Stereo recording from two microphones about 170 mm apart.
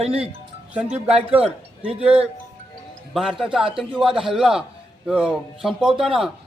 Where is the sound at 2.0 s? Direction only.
5° right (ahead or behind).